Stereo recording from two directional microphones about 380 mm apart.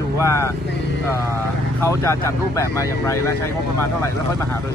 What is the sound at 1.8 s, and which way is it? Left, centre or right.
A man's voice, centre.